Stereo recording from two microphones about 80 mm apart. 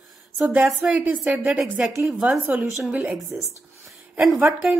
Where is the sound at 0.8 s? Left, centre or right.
Centre.